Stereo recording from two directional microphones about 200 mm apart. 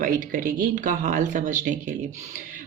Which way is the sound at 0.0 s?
45° right (ahead or behind).